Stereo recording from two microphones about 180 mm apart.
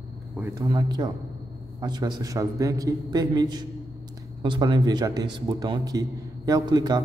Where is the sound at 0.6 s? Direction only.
20° right (ahead or behind).